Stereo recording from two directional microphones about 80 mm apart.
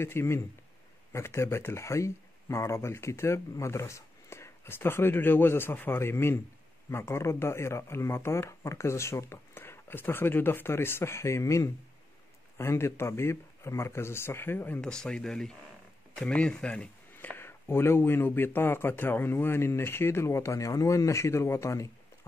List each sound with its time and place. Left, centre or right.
0.0 s speech: left
14.8 s speech: centre; by 21.8 s left